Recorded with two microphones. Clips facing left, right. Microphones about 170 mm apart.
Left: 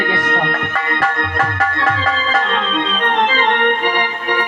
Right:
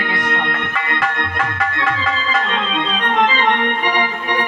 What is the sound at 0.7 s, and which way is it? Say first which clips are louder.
Music: left 2 dB; 40° left (ahead or behind).